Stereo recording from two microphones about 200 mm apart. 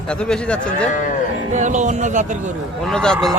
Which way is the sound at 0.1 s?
5° left (ahead or behind).